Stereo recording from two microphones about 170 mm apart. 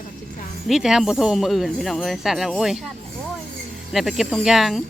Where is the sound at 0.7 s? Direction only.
5° right (ahead or behind).